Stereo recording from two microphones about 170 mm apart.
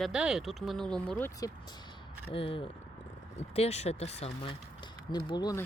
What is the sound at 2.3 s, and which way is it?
Speech, 30° left (ahead or behind).